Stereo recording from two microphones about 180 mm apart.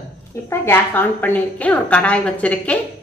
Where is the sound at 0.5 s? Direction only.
10° left (ahead or behind).